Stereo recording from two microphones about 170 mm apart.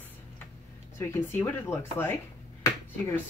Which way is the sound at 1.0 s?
15° left (ahead or behind).